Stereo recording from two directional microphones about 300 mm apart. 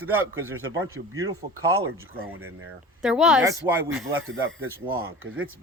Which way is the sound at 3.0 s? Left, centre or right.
Centre.